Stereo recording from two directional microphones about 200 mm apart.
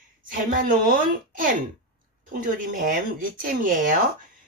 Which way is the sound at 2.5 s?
45° right (ahead or behind).